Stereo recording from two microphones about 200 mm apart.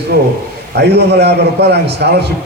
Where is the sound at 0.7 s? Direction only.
55° right (ahead or behind).